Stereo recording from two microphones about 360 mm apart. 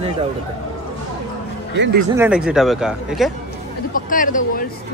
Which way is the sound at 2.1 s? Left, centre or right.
Centre.